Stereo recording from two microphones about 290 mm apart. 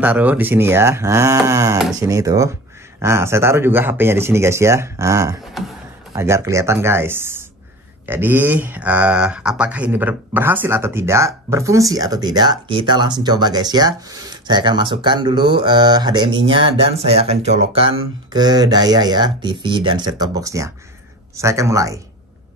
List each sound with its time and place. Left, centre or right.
0.0 s speech: centre